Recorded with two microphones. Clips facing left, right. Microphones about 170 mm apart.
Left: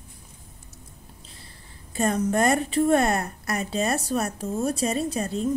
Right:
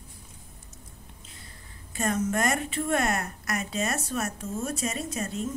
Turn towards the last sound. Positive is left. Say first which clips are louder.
# left 5 dB
turn(degrees=35)  # may be behind; listen again after turning